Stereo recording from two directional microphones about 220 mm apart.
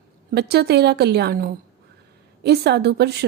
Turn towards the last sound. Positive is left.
turn(degrees=-50)  # may be behind; listen again after turning